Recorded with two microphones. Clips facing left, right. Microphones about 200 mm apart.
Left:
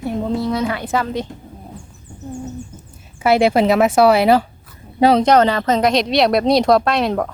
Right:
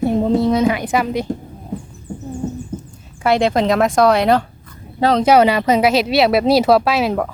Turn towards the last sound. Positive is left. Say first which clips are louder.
# right 1 dB
turn(degrees=-5)  # may be behind; listen again after turning